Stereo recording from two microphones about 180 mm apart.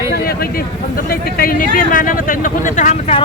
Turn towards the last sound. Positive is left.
turn(degrees=40)  # may be behind; listen again after turning